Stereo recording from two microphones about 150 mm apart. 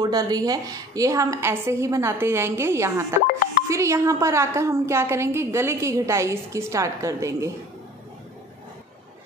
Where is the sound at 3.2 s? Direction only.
70° left (ahead or behind).